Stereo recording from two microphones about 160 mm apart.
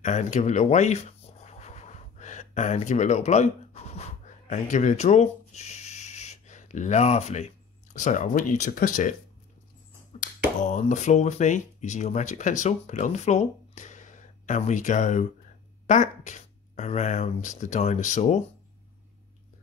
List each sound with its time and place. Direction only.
0.0 s writing: 50° left (ahead or behind)
4.5 s speech: 50° left (ahead or behind)
10.2 s speech: 50° left (ahead or behind)